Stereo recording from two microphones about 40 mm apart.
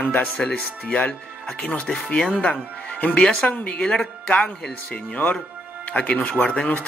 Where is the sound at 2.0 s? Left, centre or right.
Left.